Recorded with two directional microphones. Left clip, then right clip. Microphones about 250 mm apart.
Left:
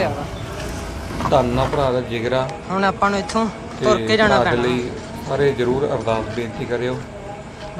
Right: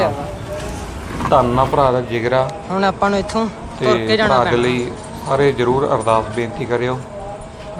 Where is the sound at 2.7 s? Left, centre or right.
Centre.